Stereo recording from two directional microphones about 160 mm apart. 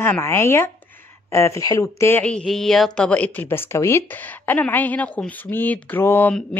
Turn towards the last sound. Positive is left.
turn(degrees=15)  # may be behind; listen again after turning